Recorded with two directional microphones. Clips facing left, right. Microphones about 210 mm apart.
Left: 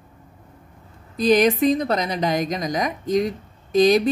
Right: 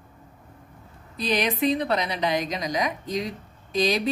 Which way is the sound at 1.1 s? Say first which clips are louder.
Left 9 dB; 45° left (ahead or behind).